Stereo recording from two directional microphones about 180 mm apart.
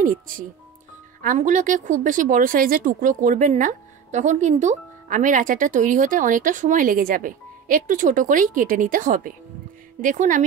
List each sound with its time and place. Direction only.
0.0 s speech: 50° right (ahead or behind)